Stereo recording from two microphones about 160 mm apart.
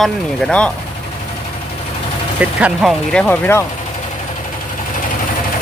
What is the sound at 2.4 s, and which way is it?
Speech, 5° right (ahead or behind).